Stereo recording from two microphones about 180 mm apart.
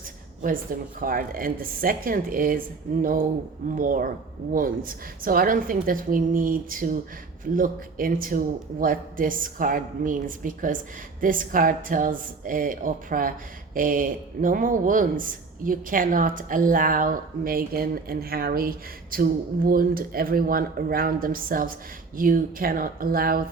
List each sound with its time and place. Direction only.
0.4 s speech: 50° right (ahead or behind)